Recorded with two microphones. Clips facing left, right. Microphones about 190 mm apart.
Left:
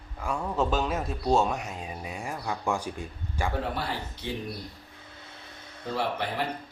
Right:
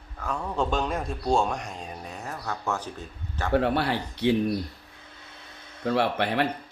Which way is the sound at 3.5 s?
70° right (ahead or behind).